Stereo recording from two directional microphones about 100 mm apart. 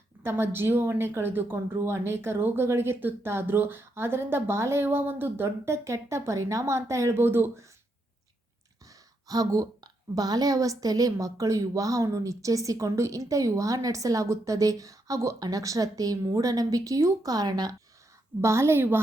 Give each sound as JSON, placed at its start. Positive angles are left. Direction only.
{"t": 0.2, "sound": "speech", "side_deg": -25}
{"t": 9.2, "sound": "a woman's voice", "side_deg": -35}
{"t": 18.4, "sound": "speech", "side_deg": -25}